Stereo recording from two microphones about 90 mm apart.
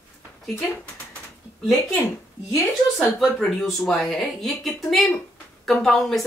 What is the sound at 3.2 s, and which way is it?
Speech, centre (ahead or behind).